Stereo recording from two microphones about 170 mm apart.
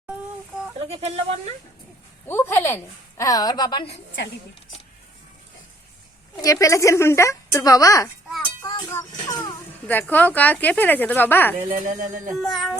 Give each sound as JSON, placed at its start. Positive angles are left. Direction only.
{"t": 0.9, "sound": "speech", "side_deg": -40}
{"t": 2.2, "sound": "a woman's voice", "side_deg": 15}
{"t": 3.9, "sound": "a woman's voice", "side_deg": 90}
{"t": 6.3, "sound": "a woman's voice", "side_deg": 20}
{"t": 8.6, "sound": "music", "side_deg": 15}
{"t": 9.8, "sound": "a woman's voice", "side_deg": 10}
{"t": 11.9, "sound": "speech", "side_deg": -50}
{"t": 12.4, "sound": "speech", "side_deg": 0}